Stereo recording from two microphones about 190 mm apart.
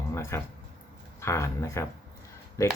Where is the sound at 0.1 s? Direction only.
15° left (ahead or behind).